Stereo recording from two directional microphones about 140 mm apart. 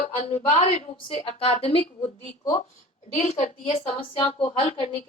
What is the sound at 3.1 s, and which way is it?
A woman's voice, 50° left (ahead or behind).